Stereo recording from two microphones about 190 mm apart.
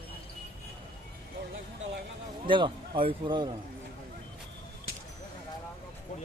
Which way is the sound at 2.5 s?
25° right (ahead or behind).